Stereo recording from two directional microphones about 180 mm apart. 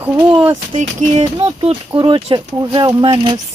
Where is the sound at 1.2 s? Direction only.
20° right (ahead or behind).